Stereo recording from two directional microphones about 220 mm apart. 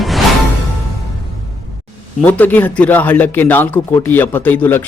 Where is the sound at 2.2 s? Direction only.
5° left (ahead or behind).